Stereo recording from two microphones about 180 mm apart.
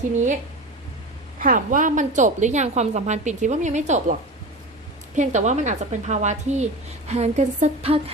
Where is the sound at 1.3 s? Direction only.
50° right (ahead or behind).